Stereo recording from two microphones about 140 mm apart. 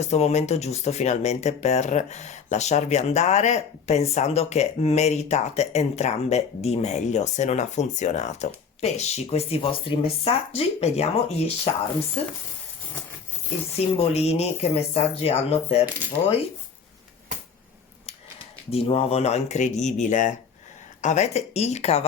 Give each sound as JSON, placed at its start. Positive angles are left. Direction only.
{"t": 0.0, "sound": "speech", "side_deg": 50}
{"t": 13.7, "sound": "speech", "side_deg": 45}
{"t": 18.7, "sound": "speech", "side_deg": 45}